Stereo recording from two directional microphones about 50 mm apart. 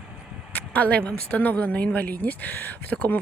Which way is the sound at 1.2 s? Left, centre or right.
Left.